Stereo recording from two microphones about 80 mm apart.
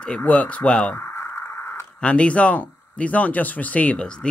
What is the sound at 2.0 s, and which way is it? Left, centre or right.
Speech, centre.